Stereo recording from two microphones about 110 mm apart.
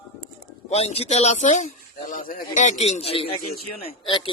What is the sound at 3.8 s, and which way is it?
Speech, 55° left (ahead or behind).